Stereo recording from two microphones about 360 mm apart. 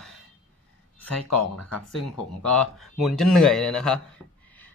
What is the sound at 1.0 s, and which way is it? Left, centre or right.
Speech, left.